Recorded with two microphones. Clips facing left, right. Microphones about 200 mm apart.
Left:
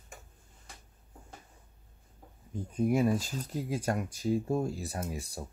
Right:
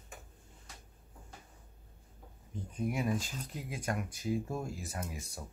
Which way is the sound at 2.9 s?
40° left (ahead or behind).